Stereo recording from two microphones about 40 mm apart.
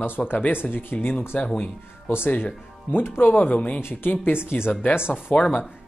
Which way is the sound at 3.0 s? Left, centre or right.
Left.